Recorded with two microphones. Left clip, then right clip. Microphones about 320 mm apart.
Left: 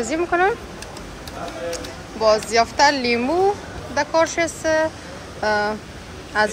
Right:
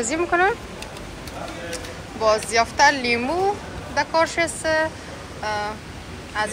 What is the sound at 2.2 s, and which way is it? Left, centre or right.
Speech, centre.